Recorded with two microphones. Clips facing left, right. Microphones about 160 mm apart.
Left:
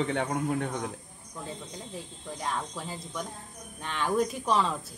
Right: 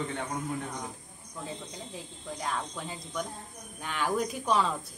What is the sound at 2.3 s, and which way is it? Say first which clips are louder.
Speech: left 1 dB; centre (ahead or behind).